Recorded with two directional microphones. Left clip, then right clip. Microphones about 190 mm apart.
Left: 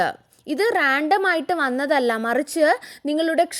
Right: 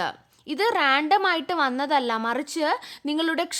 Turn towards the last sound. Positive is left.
turn(degrees=5)  # may be behind; listen again after turning